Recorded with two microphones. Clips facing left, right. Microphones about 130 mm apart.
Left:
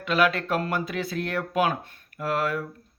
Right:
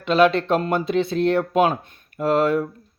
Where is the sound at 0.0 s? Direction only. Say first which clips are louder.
Right 6 dB; 25° right (ahead or behind).